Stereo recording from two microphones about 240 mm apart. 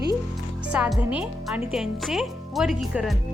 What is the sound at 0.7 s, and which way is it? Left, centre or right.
Speech, centre.